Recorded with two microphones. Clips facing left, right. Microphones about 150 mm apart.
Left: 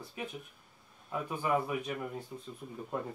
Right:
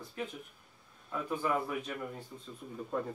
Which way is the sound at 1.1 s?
15° left (ahead or behind).